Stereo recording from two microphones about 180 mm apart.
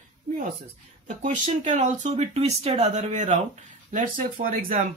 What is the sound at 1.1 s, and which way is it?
Speech, 45° right (ahead or behind).